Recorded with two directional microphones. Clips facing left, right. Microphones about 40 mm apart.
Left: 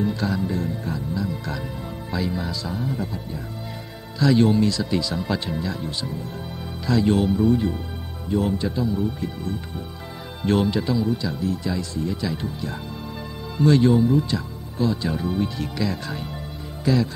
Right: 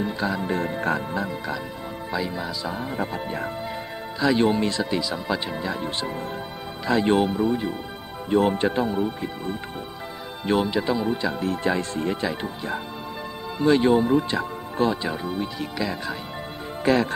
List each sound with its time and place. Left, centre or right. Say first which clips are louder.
0.0 s speech: left 1 dB; right
0.4 s speech: right 1 dB; right
2.1 s speech: left 2 dB; centre
2.7 s speech: left 1 dB; right
4.2 s speech: left 2 dB; right
4.9 s speech: left 1 dB; centre
5.6 s speech: right 1 dB; right
8.3 s speech: right 3 dB; right
10.4 s speech: left 2 dB; centre
10.8 s speech: even; right
12.3 s speech: right 1 dB; right
15.0 s speech: left 3 dB; centre
16.8 s speech: right 1 dB; right